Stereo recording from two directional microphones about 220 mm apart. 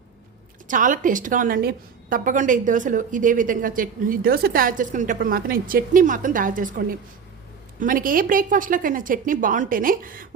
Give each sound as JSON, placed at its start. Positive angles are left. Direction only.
{"t": 0.7, "sound": "a woman's voice", "side_deg": -35}